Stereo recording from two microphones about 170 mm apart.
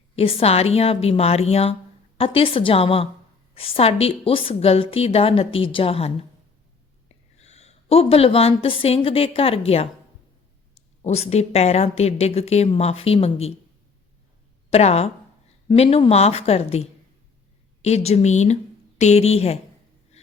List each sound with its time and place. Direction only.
0.2 s a woman's voice: 35° left (ahead or behind)
7.4 s a woman's voice: 40° left (ahead or behind)
11.0 s a woman's voice: 40° left (ahead or behind)
14.7 s a woman's voice: 40° left (ahead or behind)